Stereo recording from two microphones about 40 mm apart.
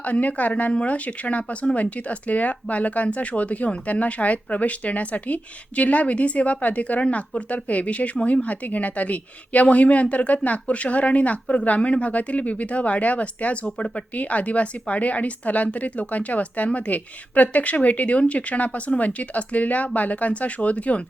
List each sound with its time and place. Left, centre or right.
0.0 s speech: left
13.7 s speech: left
14.1 s speech: left